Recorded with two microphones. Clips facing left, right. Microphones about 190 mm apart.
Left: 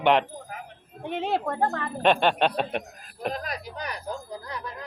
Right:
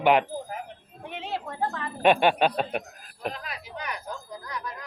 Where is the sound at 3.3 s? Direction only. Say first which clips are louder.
Left 4 dB; 40° left (ahead or behind).